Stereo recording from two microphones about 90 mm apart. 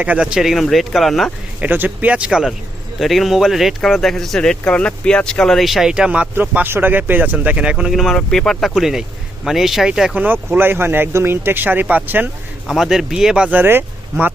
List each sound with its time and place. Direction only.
0.0 s speech: 15° right (ahead or behind)
1.6 s speech: 20° right (ahead or behind)
7.9 s speech: centre (ahead or behind)
10.5 s speech: 25° right (ahead or behind)
12.6 s speech: 5° right (ahead or behind); by 14.3 s 25° right (ahead or behind)